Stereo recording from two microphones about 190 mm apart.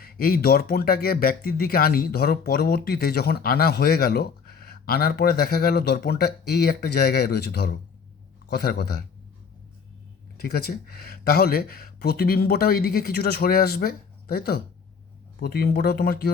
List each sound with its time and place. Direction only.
0.0 s speech: 50° left (ahead or behind)
10.3 s speech: 55° left (ahead or behind)